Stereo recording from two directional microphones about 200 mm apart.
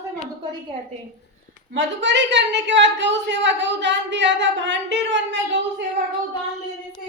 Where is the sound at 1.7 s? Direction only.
65° right (ahead or behind).